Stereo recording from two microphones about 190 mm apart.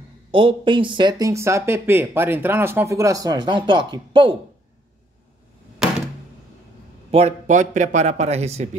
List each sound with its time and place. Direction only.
0.3 s speech: 25° right (ahead or behind)
7.1 s a man's voice: 35° right (ahead or behind)